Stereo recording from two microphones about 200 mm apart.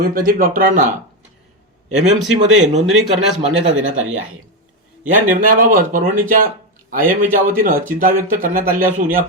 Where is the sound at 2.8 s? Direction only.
Centre (ahead or behind).